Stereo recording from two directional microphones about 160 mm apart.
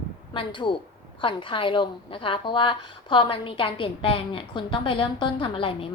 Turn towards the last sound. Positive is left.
turn(degrees=35)  # may be behind; listen again after turning